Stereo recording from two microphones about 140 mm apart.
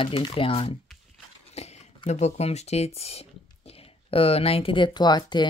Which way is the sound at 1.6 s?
55° left (ahead or behind).